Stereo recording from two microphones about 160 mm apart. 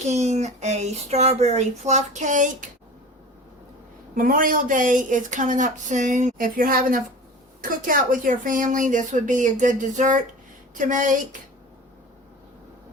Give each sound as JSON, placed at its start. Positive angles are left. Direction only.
{"t": 0.0, "sound": "speech", "side_deg": -45}
{"t": 4.1, "sound": "speech", "side_deg": -60}